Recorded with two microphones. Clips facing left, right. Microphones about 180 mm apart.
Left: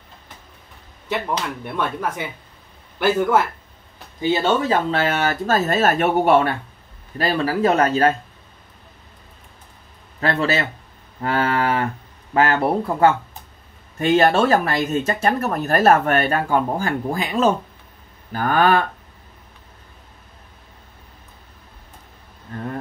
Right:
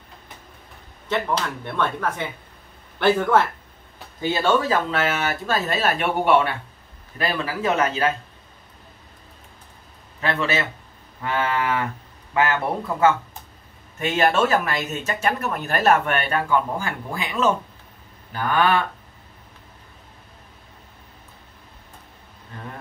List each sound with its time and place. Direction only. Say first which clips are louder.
1.0 s speech: even; 10° left (ahead or behind)
4.2 s speech: left 2 dB; 20° left (ahead or behind)
5.0 s speech: left 4 dB; 40° left (ahead or behind)
10.2 s speech: left 3 dB; 35° left (ahead or behind)